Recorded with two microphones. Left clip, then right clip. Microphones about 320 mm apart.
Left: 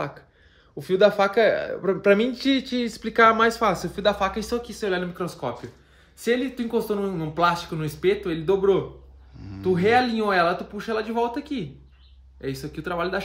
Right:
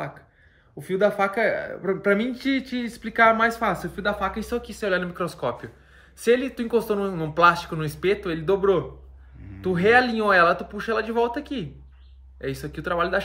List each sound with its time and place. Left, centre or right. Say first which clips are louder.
0.7 s speech: left 3 dB; left; by 13.2 s centre